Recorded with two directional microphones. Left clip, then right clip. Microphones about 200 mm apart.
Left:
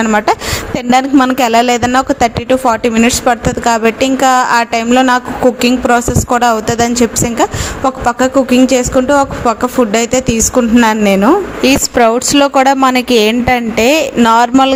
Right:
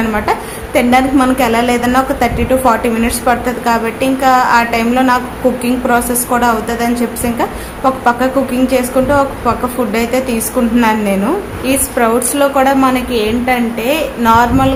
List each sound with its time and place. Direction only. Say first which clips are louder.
0.0 s a woman's voice: left 4 dB; 40° left (ahead or behind)